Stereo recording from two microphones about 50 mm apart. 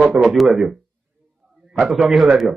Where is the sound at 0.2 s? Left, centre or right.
Centre.